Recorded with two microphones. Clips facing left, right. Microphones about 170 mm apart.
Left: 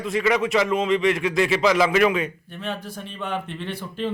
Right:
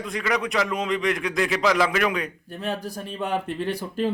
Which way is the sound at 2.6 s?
40° right (ahead or behind).